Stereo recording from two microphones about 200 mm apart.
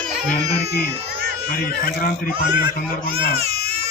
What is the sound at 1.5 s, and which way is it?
Speech, 45° left (ahead or behind).